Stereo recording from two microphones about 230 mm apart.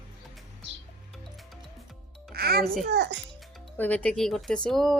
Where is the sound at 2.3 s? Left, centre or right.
Right.